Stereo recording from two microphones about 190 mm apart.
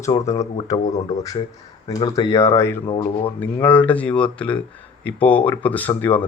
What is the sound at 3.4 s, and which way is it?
Speech, 10° left (ahead or behind).